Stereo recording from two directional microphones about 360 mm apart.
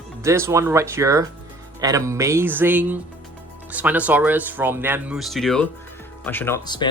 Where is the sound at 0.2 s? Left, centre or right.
Centre.